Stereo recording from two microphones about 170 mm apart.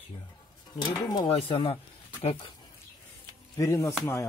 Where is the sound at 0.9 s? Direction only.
25° left (ahead or behind).